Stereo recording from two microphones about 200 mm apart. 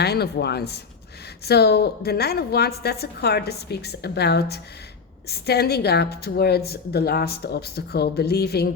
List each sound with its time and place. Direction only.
0.0 s a woman's voice: 55° left (ahead or behind)